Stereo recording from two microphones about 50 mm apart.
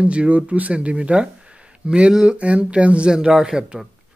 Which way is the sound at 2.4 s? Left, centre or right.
Right.